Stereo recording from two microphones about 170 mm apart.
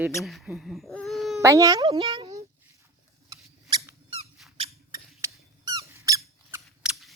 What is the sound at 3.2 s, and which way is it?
Squeak, 20° right (ahead or behind).